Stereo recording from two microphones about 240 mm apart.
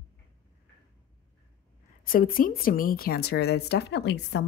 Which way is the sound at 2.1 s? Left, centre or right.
Left.